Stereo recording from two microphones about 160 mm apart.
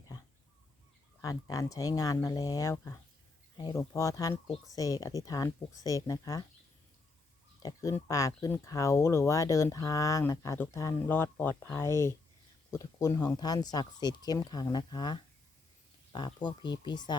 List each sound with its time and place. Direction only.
1.2 s speech: 20° left (ahead or behind)
7.6 s speech: 20° left (ahead or behind)